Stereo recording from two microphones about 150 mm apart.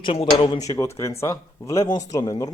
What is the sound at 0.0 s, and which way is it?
Speech, 40° left (ahead or behind).